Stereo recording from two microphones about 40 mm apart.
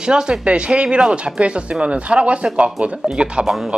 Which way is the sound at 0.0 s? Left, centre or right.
Right.